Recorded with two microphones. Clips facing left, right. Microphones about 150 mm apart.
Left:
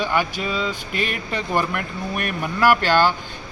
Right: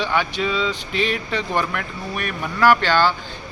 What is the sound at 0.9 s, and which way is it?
Speech, 50° left (ahead or behind).